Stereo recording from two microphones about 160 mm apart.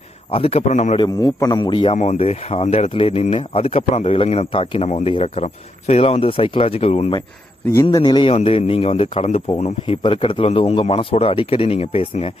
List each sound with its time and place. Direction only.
0.3 s a man's voice: 35° left (ahead or behind)
0.9 s speech: 25° left (ahead or behind)
2.0 s speech: 45° left (ahead or behind)
7.9 s speech: 25° left (ahead or behind)
8.3 s speech: 40° left (ahead or behind)